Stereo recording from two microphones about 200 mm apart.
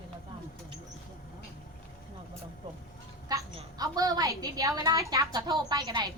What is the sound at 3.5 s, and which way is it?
A woman's voice, 20° right (ahead or behind).